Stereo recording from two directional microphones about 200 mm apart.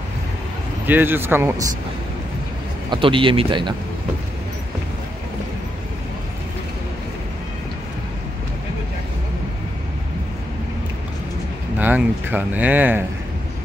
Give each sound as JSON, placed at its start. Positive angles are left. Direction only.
{"t": 0.8, "sound": "speech", "side_deg": -10}
{"t": 2.9, "sound": "speech", "side_deg": -25}
{"t": 11.8, "sound": "speech", "side_deg": -10}